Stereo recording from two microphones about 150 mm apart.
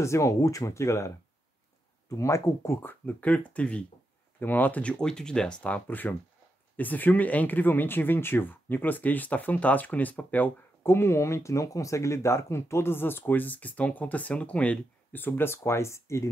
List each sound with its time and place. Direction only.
0.0 s speech: 20° left (ahead or behind)